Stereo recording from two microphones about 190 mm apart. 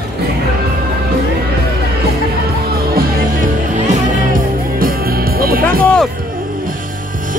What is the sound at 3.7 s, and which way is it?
Music, 40° right (ahead or behind).